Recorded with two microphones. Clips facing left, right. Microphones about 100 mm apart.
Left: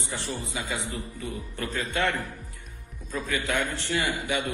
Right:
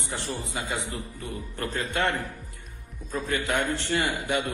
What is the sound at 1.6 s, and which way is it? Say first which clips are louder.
A man's voice: right 1 dB; 40° right (ahead or behind).